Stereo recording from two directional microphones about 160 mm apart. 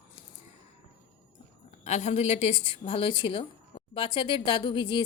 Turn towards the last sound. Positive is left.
turn(degrees=30)  # may be behind; listen again after turning